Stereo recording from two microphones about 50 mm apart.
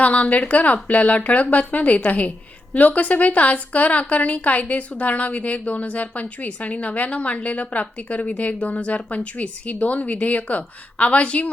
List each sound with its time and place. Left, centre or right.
0.0 s a woman's voice: left